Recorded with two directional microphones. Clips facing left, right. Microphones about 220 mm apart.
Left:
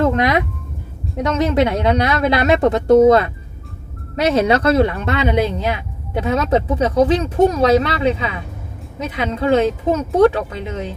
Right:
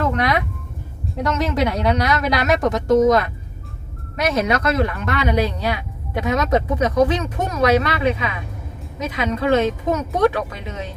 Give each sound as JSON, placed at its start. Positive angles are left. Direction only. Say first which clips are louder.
{"t": 0.0, "sound": "speech", "louder": "left 4 dB", "side_deg": 20}